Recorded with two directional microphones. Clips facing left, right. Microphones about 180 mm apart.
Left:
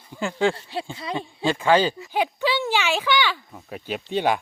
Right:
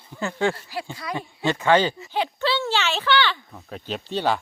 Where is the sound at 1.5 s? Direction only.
10° left (ahead or behind).